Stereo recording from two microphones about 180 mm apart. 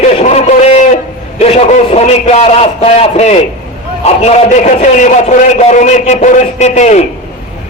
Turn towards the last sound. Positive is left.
turn(degrees=40)  # may be behind; listen again after turning